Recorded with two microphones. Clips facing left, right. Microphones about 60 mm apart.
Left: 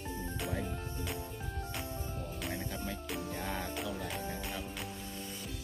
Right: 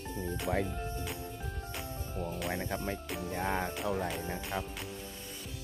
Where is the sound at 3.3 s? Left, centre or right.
Right.